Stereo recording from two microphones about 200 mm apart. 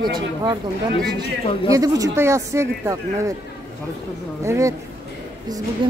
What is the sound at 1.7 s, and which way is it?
A woman's voice, 15° right (ahead or behind).